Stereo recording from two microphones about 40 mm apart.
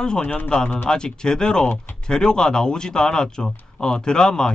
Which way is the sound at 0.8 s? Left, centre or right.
Centre.